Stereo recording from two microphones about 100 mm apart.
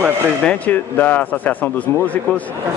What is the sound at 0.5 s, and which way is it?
Speech, 20° left (ahead or behind).